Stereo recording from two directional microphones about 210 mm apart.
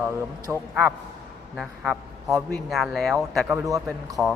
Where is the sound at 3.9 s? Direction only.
Centre (ahead or behind).